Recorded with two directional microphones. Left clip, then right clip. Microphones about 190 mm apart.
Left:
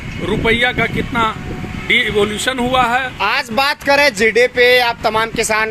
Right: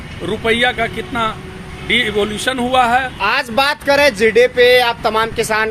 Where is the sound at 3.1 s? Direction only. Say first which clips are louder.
Right 1 dB; 40° left (ahead or behind).